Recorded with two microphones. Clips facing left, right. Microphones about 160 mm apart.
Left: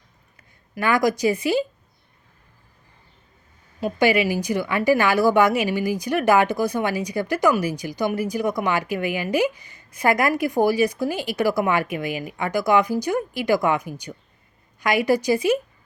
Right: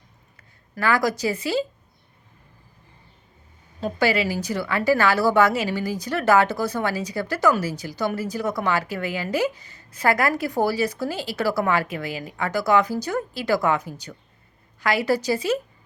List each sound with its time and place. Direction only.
0.8 s a woman's voice: 15° left (ahead or behind)
3.8 s a woman's voice: 15° left (ahead or behind)